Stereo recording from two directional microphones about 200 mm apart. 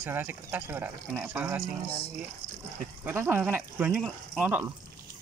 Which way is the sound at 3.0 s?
10° right (ahead or behind).